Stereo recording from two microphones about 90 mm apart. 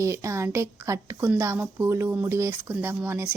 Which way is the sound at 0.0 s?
35° right (ahead or behind).